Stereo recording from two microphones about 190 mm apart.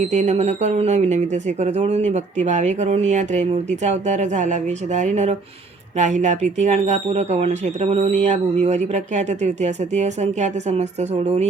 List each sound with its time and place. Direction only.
0.0 s speech: 40° right (ahead or behind)